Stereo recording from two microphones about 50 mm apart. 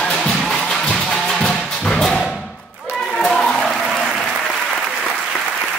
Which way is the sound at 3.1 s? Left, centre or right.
Centre.